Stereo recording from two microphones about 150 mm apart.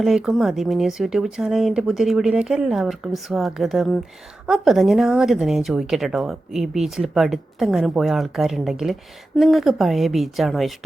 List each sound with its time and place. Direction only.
0.0 s a woman's voice: centre (ahead or behind)